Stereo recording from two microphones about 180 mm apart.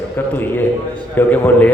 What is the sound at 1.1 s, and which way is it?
Speech, 10° left (ahead or behind).